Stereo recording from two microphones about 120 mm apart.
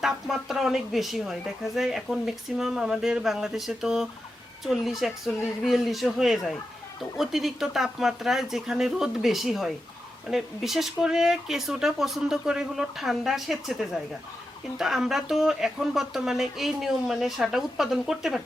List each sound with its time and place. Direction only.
0.0 s speech: 5° right (ahead or behind)